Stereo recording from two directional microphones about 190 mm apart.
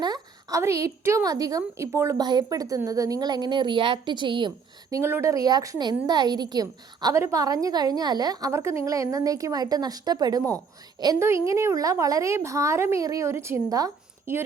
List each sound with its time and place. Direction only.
0.0 s a woman's voice: 20° right (ahead or behind)